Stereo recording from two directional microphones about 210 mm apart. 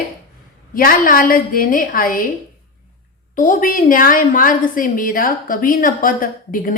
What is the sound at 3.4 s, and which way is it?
A woman's voice, 40° left (ahead or behind).